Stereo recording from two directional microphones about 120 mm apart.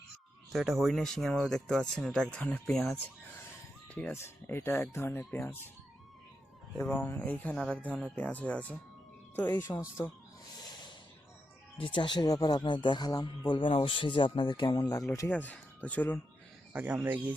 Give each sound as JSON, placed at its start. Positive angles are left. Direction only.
{"t": 0.5, "sound": "speech", "side_deg": 0}
{"t": 3.9, "sound": "speech", "side_deg": 15}
{"t": 6.8, "sound": "speech", "side_deg": 15}
{"t": 9.6, "sound": "speech", "side_deg": 20}
{"t": 11.8, "sound": "speech", "side_deg": 45}
{"t": 15.3, "sound": "speech", "side_deg": 10}
{"t": 16.7, "sound": "speech", "side_deg": -15}